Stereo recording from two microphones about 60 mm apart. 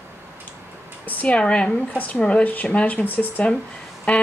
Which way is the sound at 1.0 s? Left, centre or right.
Left.